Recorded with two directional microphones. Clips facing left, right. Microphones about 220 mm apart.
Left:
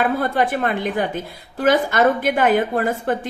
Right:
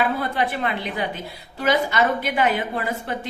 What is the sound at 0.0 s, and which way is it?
A woman's voice, 50° left (ahead or behind).